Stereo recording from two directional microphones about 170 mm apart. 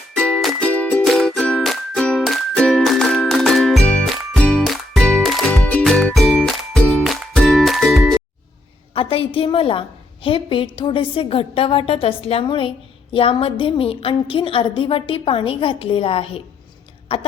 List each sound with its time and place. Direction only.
0.1 s music: 5° left (ahead or behind)
9.0 s a woman's voice: 30° left (ahead or behind)